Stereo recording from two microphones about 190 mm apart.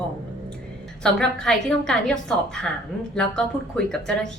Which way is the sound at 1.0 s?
5° left (ahead or behind).